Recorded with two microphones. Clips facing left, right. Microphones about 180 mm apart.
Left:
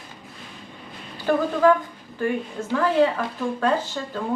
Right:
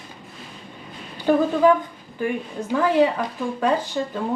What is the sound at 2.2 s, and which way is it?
Speech, 15° right (ahead or behind).